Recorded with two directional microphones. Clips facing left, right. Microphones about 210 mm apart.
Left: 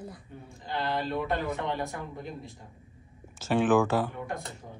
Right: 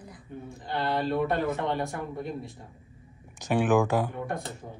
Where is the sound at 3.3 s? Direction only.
15° right (ahead or behind).